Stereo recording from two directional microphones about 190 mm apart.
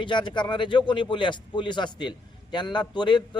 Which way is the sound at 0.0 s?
25° left (ahead or behind).